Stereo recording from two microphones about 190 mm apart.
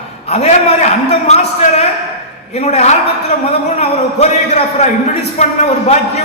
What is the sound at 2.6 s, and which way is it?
Speech, 35° left (ahead or behind).